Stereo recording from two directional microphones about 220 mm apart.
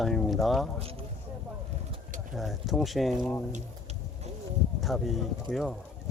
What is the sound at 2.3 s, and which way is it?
Speech, centre (ahead or behind).